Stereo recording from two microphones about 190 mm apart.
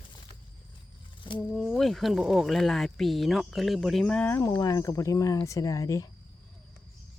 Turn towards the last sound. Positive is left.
turn(degrees=15)  # may be behind; listen again after turning